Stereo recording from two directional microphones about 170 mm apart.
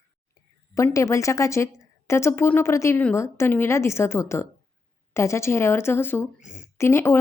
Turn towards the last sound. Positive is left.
turn(degrees=15)  # may be behind; listen again after turning